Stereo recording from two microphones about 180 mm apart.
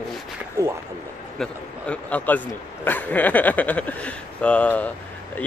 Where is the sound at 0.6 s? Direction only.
15° right (ahead or behind).